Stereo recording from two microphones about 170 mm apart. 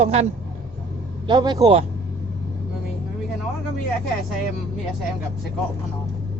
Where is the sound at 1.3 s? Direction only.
25° right (ahead or behind).